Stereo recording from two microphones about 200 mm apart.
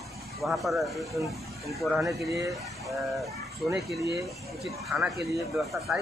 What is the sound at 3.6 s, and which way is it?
Speech, centre (ahead or behind).